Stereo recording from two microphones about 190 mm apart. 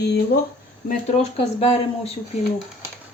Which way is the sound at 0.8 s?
40° left (ahead or behind).